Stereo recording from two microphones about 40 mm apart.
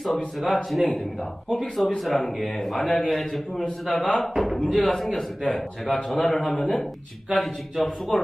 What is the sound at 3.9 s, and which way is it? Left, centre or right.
Speech, left.